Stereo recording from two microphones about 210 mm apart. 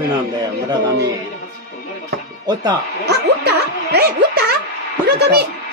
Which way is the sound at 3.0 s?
50° right (ahead or behind).